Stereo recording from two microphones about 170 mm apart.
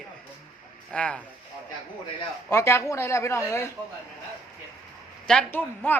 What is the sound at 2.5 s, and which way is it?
Speech, 15° left (ahead or behind).